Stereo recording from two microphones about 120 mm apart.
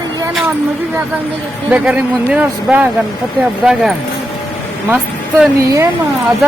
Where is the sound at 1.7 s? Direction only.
10° right (ahead or behind).